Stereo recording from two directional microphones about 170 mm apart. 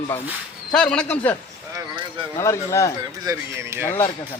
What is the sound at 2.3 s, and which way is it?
Speech, 15° left (ahead or behind).